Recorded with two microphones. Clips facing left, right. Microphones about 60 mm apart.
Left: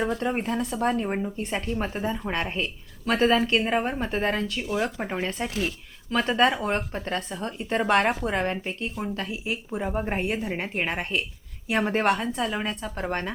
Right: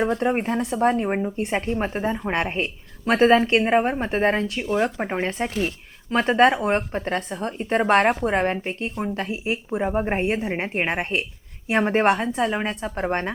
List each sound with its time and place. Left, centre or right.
0.0 s a woman's voice: right